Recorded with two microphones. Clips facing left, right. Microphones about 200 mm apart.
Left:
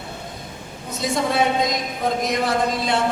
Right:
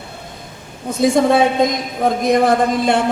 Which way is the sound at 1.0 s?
50° right (ahead or behind).